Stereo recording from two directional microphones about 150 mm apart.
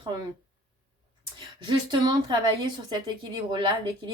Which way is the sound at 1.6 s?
30° right (ahead or behind).